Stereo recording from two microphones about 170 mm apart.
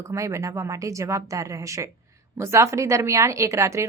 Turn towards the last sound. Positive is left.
turn(degrees=-15)  # may be behind; listen again after turning